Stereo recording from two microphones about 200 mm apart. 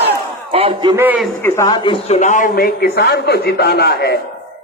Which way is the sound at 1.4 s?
15° left (ahead or behind).